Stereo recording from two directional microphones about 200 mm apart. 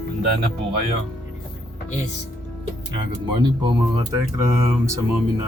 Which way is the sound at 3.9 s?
15° right (ahead or behind).